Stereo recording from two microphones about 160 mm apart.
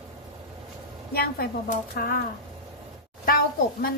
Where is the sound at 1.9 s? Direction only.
65° left (ahead or behind).